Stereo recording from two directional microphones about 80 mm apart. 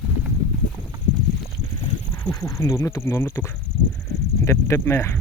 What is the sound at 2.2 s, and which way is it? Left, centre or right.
Speech, left.